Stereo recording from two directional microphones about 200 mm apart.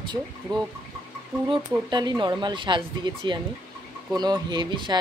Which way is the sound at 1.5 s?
20° right (ahead or behind).